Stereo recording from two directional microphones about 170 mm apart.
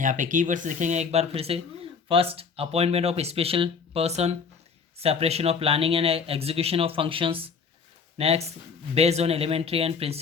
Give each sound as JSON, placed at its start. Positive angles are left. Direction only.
{"t": 0.0, "sound": "speech", "side_deg": -50}